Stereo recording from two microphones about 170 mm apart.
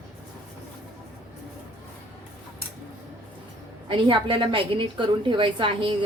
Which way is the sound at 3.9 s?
30° right (ahead or behind).